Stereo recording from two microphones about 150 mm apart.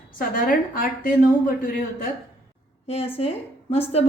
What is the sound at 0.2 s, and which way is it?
Speech, 70° left (ahead or behind).